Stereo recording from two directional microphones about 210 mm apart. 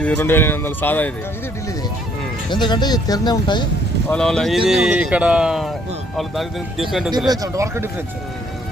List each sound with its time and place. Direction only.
0.0 s speech: 10° left (ahead or behind)
2.5 s speech: 20° left (ahead or behind)
4.1 s speech: 5° left (ahead or behind)
7.3 s speech: 15° right (ahead or behind)